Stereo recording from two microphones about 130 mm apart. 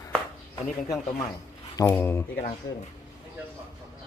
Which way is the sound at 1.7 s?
15° left (ahead or behind).